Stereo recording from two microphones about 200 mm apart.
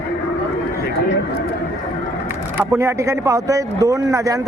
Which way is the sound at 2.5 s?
15° right (ahead or behind).